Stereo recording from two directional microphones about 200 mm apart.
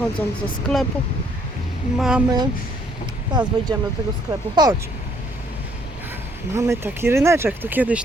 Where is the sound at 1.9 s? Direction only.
Centre (ahead or behind).